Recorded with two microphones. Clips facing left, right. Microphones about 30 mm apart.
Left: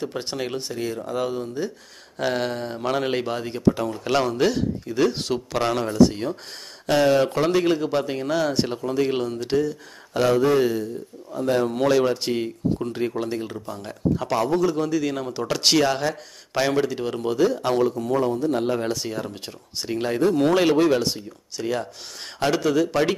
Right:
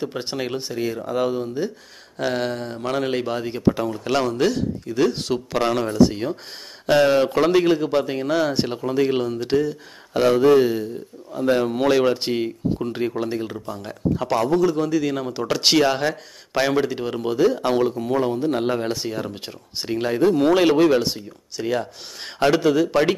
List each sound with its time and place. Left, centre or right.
0.0 s speech: centre
2.1 s speech: centre; by 18.8 s right
19.1 s speech: centre